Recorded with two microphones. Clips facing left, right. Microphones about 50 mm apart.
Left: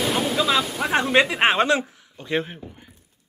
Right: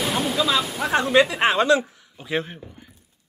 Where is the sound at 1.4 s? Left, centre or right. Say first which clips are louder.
Right 1 dB; left.